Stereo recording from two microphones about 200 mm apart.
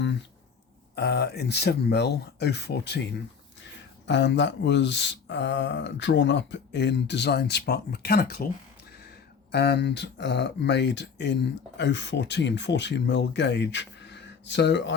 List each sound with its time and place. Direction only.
0.9 s speech: 55° left (ahead or behind)
9.5 s speech: 55° left (ahead or behind)